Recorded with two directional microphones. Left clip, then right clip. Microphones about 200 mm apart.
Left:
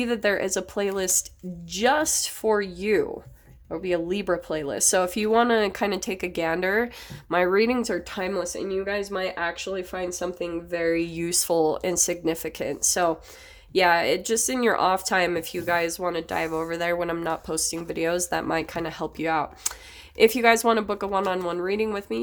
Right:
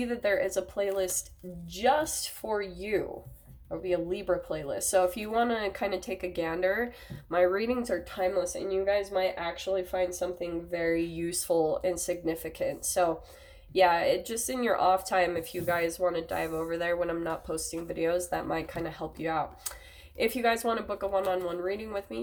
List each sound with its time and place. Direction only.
0.0 s speech: 55° left (ahead or behind)